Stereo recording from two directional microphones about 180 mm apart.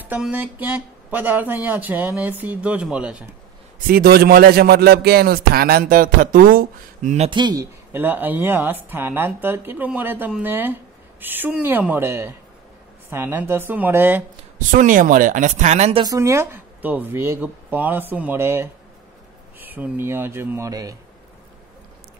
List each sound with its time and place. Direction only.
0.0 s speech: 10° right (ahead or behind)
3.8 s a man's voice: 55° right (ahead or behind)
7.2 s speech: 25° right (ahead or behind)
7.9 s speech: 10° right (ahead or behind)
14.7 s speech: 45° right (ahead or behind)
16.0 s speech: 20° right (ahead or behind)